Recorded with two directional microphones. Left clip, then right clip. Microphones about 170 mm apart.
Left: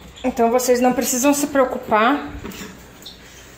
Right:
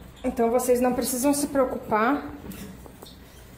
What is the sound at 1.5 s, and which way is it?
Speech, 5° left (ahead or behind).